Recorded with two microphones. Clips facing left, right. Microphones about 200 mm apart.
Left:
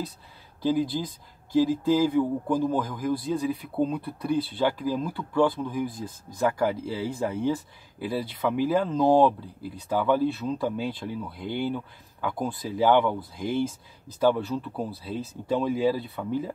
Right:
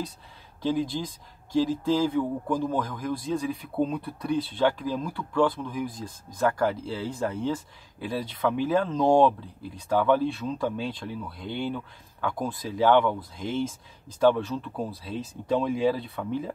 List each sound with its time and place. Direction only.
0.6 s speech: 5° left (ahead or behind)
14.3 s speech: 10° left (ahead or behind)